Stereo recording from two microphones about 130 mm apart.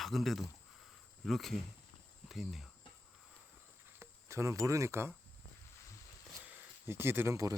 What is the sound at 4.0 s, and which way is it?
Speech, 25° right (ahead or behind).